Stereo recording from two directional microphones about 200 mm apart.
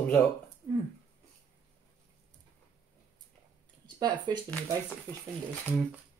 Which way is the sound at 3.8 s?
20° right (ahead or behind).